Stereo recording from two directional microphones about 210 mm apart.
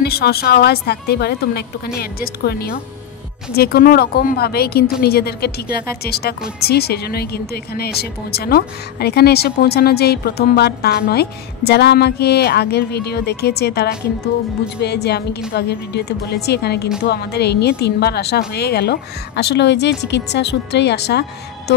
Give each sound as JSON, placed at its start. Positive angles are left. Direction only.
{"t": 0.0, "sound": "speech", "side_deg": 50}